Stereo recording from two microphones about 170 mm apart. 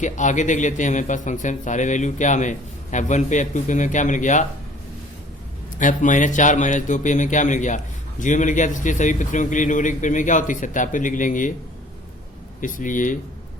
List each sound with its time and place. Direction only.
0.0 s a man's voice: 45° left (ahead or behind)
5.8 s a man's voice: 50° left (ahead or behind)
12.6 s a man's voice: 50° left (ahead or behind)